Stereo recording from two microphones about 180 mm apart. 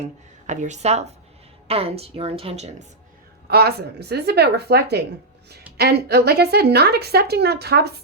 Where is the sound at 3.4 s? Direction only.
65° right (ahead or behind).